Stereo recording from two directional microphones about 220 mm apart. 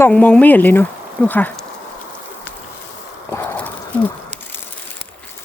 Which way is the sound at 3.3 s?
10° left (ahead or behind).